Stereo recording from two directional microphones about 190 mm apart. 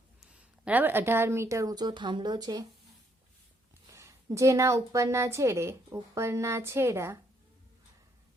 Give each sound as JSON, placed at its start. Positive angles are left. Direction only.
{"t": 0.2, "sound": "speech", "side_deg": -5}
{"t": 3.9, "sound": "a woman's voice", "side_deg": -15}